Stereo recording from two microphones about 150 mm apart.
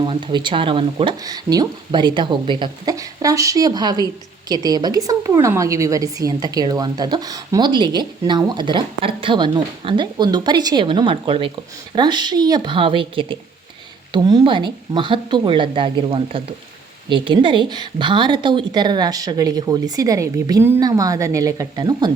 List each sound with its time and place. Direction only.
0.0 s speech: 35° right (ahead or behind)
1.1 s a woman's voice: 25° right (ahead or behind)